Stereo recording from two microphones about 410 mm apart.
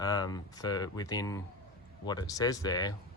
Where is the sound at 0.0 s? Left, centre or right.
Centre.